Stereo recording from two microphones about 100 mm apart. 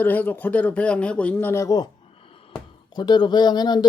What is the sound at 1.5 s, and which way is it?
Speech, 30° left (ahead or behind).